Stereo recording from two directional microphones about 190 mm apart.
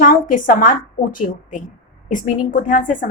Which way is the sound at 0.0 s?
45° left (ahead or behind).